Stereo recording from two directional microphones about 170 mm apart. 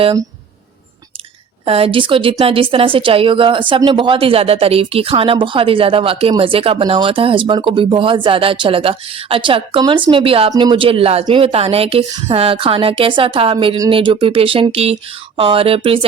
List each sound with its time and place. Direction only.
0.0 s speech: 25° right (ahead or behind)
1.6 s a woman's voice: 35° right (ahead or behind)